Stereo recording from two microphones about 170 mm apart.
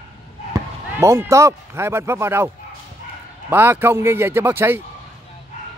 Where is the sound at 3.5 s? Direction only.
10° right (ahead or behind).